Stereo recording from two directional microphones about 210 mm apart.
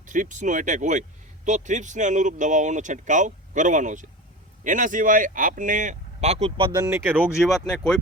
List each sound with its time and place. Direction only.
0.0 s speech: 35° right (ahead or behind)
6.7 s speech: 15° right (ahead or behind)